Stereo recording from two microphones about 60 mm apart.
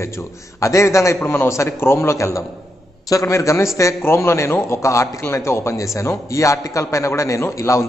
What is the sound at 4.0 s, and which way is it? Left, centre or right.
Speech, left.